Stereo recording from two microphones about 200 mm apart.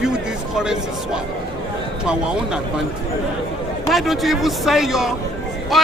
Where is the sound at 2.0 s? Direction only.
5° right (ahead or behind).